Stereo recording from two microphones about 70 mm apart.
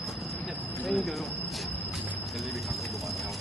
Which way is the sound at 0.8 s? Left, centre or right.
Centre.